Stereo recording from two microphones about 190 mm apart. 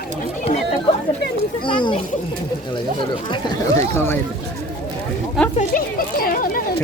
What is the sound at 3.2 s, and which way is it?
Speech, 25° left (ahead or behind).